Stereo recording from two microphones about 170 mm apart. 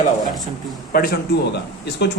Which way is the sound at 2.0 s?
75° left (ahead or behind).